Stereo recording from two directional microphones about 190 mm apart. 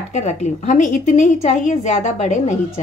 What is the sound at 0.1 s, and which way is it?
A woman's voice, 40° left (ahead or behind).